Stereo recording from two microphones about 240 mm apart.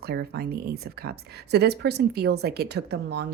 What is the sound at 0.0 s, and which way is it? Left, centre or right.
Speech, right.